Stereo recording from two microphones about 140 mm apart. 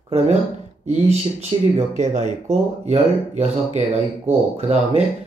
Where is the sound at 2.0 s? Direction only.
55° right (ahead or behind).